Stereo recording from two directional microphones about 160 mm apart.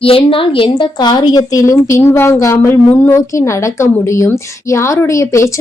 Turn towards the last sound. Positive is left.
turn(degrees=20)  # may be behind; listen again after turning